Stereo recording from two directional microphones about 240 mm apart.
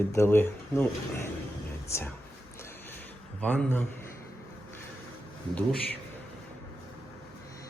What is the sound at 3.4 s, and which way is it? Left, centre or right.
Speech, centre.